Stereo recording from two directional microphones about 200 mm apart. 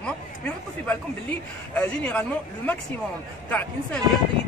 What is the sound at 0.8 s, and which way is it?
Speech, 5° left (ahead or behind).